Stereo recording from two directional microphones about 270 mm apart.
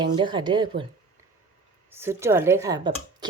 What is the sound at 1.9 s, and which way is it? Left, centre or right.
Speech, centre.